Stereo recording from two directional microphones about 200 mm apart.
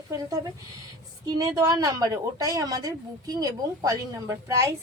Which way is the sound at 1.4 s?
15° right (ahead or behind).